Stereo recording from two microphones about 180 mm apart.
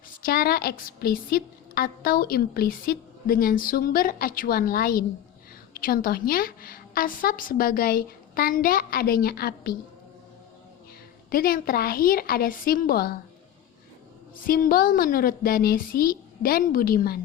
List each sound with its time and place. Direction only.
0.1 s a woman's voice: 55° left (ahead or behind)
11.3 s a woman's voice: 55° left (ahead or behind)
14.4 s a woman's voice: 50° left (ahead or behind)